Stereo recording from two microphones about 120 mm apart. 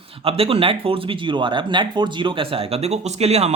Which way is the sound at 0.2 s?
50° right (ahead or behind).